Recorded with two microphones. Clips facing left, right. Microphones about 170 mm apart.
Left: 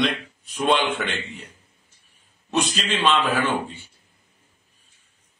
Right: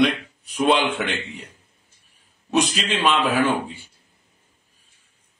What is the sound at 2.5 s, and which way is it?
Speech, 10° right (ahead or behind).